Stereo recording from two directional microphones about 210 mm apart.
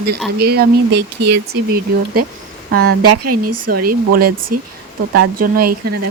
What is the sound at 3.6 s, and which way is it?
Speech, 40° right (ahead or behind).